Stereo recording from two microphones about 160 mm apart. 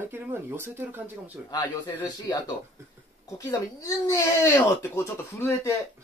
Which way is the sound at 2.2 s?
25° left (ahead or behind).